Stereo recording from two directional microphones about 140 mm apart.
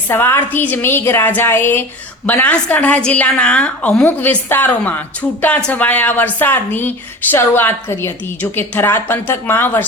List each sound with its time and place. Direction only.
0.1 s a woman's voice: 15° left (ahead or behind)